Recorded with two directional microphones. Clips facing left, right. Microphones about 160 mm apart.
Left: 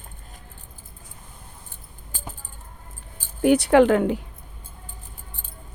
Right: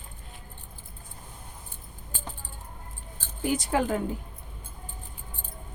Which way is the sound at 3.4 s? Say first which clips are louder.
Left 11 dB; 65° left (ahead or behind).